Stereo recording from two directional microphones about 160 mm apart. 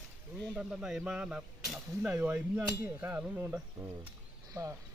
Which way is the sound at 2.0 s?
10° right (ahead or behind).